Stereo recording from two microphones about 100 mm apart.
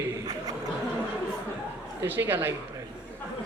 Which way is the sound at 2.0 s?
20° right (ahead or behind).